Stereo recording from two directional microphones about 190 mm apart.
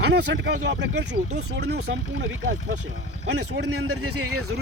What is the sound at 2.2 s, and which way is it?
Speech, 90° right.